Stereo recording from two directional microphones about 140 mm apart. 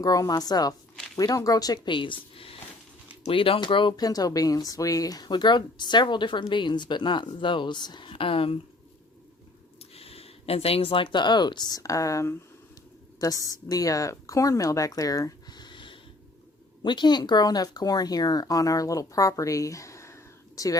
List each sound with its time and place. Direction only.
0.0 s speech: 25° left (ahead or behind)
9.9 s speech: 45° left (ahead or behind); by 20.7 s 20° left (ahead or behind)